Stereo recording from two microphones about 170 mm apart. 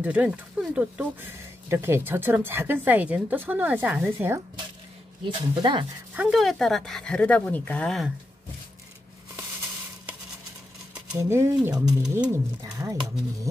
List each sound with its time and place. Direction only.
0.0 s speech: 10° right (ahead or behind)
5.2 s speech: 30° right (ahead or behind)
6.1 s speech: centre (ahead or behind)
11.1 s speech: 15° right (ahead or behind)